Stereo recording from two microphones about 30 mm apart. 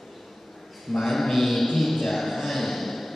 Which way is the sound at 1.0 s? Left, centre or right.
Centre.